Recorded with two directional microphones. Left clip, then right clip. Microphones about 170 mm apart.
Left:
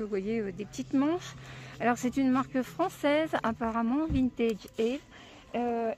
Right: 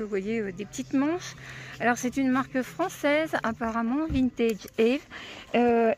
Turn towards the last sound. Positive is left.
turn(degrees=-40)  # may be behind; listen again after turning